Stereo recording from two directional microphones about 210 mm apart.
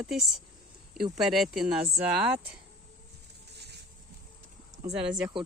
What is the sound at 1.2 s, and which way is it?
Speech, centre (ahead or behind).